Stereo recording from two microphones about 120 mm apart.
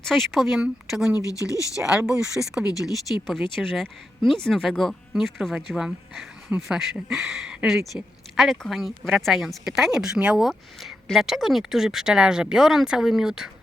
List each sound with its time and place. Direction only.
0.0 s a woman's voice: centre (ahead or behind)
1.1 s speech: 25° left (ahead or behind)
2.0 s a woman's voice: 5° right (ahead or behind)